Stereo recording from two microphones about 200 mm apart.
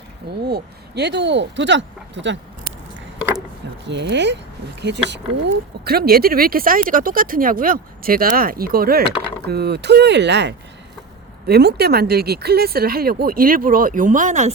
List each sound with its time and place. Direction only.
0.3 s speech: 55° right (ahead or behind)
3.8 s speech: 60° right (ahead or behind); by 14.5 s 35° right (ahead or behind)